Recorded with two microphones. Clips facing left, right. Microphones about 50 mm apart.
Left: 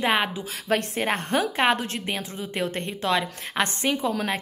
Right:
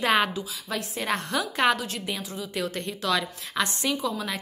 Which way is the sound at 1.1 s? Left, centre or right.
Left.